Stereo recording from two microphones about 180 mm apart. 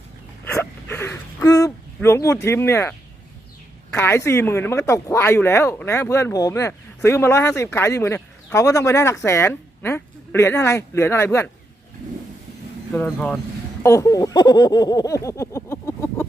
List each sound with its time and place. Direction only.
0.5 s gasp: 15° left (ahead or behind)
3.9 s speech: 15° left (ahead or behind)
12.9 s speech: 10° left (ahead or behind)
13.8 s speech: 15° left (ahead or behind)